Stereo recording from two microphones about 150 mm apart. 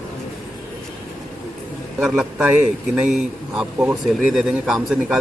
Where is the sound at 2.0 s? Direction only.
Centre (ahead or behind).